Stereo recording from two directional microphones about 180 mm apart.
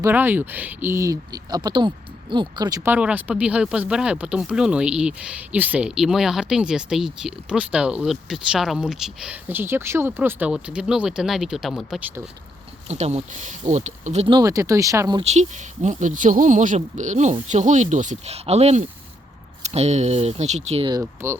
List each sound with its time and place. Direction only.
0.0 s speech: 10° right (ahead or behind)
12.9 s speech: 35° right (ahead or behind)
14.3 s speech: 20° right (ahead or behind)
15.2 s speech: 40° right (ahead or behind)
20.9 s speech: 15° right (ahead or behind)